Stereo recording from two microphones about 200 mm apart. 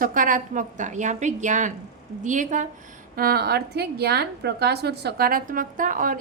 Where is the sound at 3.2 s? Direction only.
50° right (ahead or behind).